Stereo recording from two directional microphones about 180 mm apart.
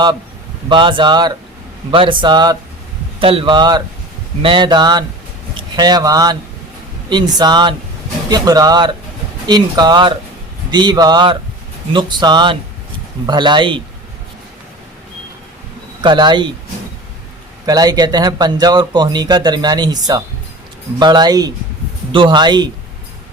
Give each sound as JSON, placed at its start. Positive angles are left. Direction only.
{"t": 0.7, "sound": "speech", "side_deg": -25}
{"t": 16.0, "sound": "speech", "side_deg": -25}
{"t": 17.7, "sound": "speech", "side_deg": -20}